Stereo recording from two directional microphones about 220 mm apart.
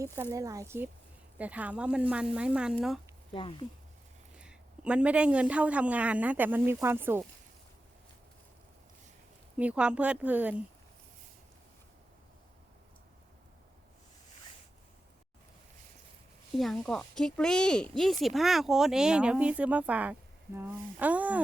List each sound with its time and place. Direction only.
0.0 s a man's voice: 15° right (ahead or behind)
3.3 s speech: 25° left (ahead or behind)
4.4 s a man's voice: 5° right (ahead or behind)
9.6 s speech: 5° right (ahead or behind)
16.6 s speech: 5° left (ahead or behind)